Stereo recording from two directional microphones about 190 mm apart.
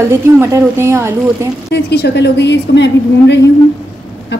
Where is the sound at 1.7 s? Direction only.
60° left (ahead or behind).